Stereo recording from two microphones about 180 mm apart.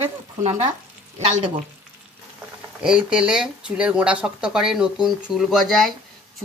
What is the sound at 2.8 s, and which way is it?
Speech, 5° right (ahead or behind).